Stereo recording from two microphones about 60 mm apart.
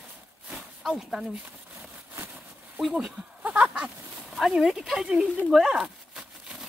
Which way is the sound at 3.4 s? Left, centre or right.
Right.